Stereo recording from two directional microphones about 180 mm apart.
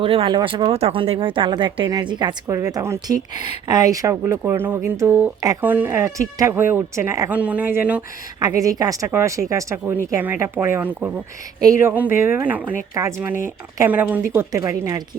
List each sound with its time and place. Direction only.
0.0 s speech: 30° right (ahead or behind); by 8.0 s 10° right (ahead or behind)
8.4 s speech: 20° right (ahead or behind)